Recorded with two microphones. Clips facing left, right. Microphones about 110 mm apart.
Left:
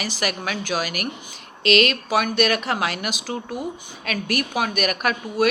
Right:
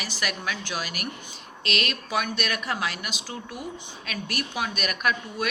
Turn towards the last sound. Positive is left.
turn(degrees=60)  # may be behind; listen again after turning